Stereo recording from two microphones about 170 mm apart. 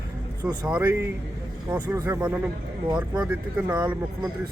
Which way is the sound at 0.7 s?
10° right (ahead or behind).